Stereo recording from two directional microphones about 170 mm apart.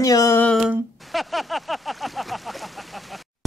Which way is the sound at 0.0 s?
20° left (ahead or behind).